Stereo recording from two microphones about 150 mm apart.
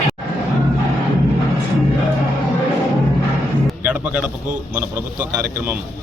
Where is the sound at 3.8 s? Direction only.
10° right (ahead or behind).